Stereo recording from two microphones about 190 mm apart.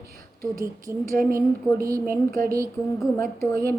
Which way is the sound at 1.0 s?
50° right (ahead or behind).